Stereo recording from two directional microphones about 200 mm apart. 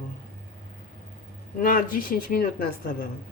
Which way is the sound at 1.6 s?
45° left (ahead or behind).